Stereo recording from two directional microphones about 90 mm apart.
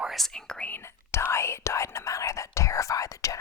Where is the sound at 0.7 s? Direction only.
30° left (ahead or behind).